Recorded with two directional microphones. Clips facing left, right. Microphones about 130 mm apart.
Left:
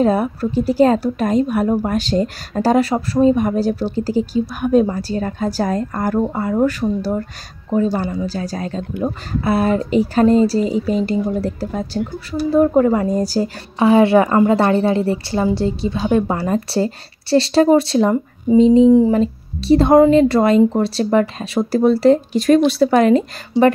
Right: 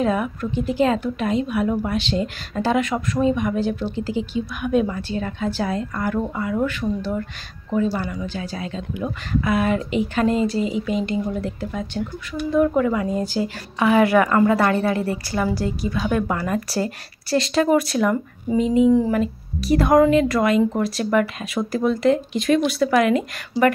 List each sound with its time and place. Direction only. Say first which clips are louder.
0.0 s a woman's voice: left 5 dB; 35° left (ahead or behind)
23.5 s speech: left 5 dB; 65° left (ahead or behind)